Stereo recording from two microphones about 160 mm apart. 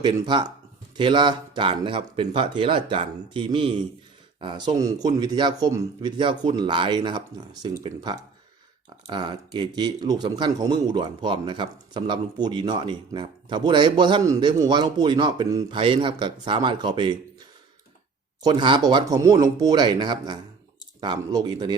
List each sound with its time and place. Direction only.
0.0 s speech: 30° right (ahead or behind)
18.4 s speech: 30° right (ahead or behind)